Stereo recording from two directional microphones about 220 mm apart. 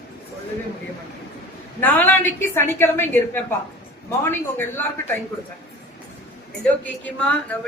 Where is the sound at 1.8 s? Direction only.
10° left (ahead or behind).